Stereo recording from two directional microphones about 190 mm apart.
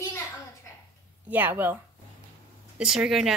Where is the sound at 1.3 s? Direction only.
10° right (ahead or behind).